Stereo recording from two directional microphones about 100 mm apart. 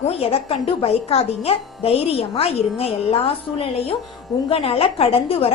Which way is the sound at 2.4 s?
90° left.